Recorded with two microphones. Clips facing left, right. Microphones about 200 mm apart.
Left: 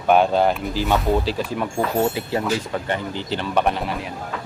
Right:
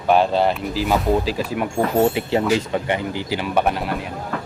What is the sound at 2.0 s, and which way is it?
Speech, 25° right (ahead or behind).